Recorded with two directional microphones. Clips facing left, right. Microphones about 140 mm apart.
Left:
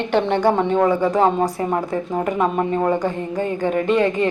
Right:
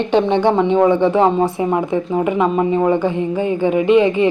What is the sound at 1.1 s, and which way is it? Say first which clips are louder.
Speech: right 3 dB; 10° right (ahead or behind).